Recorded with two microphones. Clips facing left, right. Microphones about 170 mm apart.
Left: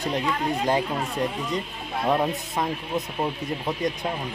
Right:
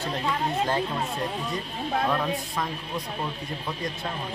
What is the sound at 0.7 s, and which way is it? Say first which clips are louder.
Speech: left 3 dB; 15° left (ahead or behind).